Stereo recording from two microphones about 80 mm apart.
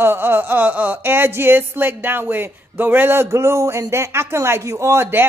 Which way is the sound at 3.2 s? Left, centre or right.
Right.